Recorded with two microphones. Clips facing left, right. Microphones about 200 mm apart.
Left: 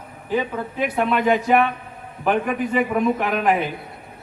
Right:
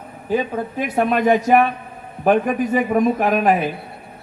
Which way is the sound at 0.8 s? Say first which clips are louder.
Right 2 dB; 45° right (ahead or behind).